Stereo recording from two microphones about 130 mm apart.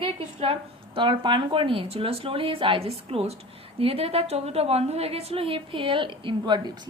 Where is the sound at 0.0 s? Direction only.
45° right (ahead or behind).